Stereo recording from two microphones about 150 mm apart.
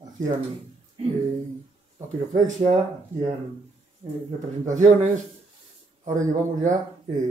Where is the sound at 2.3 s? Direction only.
50° right (ahead or behind).